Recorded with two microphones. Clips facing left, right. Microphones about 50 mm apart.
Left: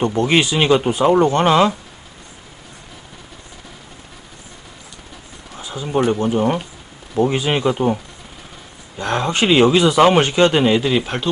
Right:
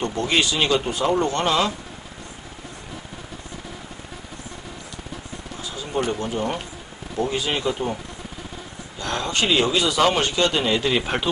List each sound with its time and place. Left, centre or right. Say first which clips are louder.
0.0 s speech: left 6 dB; centre
5.6 s speech: left 7 dB; left
10.8 s speech: left 3 dB; centre